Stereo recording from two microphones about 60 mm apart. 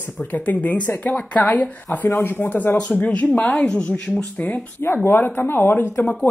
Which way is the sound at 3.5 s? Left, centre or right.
Centre.